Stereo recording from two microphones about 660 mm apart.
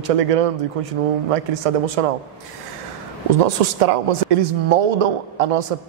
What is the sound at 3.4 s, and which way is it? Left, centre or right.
A woman's voice, right.